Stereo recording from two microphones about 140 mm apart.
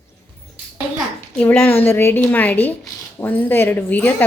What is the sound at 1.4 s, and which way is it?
A child's voice, 15° left (ahead or behind).